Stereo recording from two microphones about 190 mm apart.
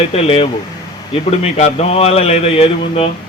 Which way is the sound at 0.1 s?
30° left (ahead or behind).